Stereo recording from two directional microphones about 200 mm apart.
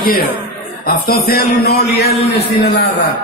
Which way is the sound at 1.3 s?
50° left (ahead or behind).